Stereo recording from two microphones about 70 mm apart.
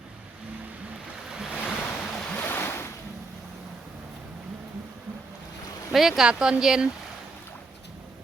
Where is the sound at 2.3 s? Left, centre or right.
Left.